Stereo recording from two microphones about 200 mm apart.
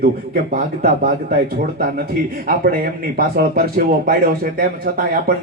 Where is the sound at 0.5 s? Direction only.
35° right (ahead or behind).